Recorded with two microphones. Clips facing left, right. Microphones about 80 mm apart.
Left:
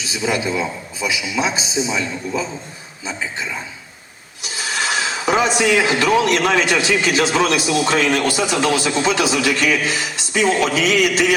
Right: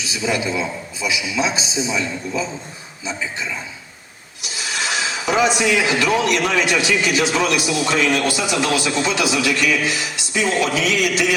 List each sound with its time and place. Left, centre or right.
0.3 s speech: left
4.4 s speech: left